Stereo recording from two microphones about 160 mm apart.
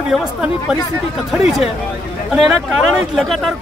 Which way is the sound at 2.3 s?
Centre (ahead or behind).